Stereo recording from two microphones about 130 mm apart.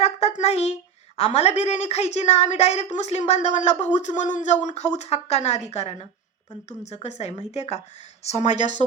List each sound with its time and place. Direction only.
0.0 s a woman's voice: 55° left (ahead or behind)